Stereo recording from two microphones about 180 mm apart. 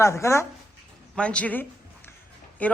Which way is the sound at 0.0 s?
15° left (ahead or behind).